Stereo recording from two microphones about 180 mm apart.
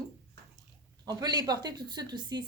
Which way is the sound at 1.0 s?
20° right (ahead or behind).